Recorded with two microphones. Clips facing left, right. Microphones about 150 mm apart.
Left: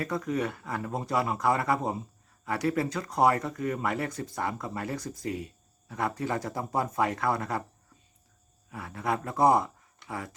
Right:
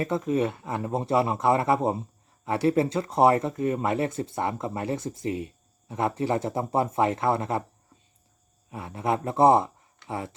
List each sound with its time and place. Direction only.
0.0 s speech: 25° right (ahead or behind)
8.7 s speech: 25° right (ahead or behind)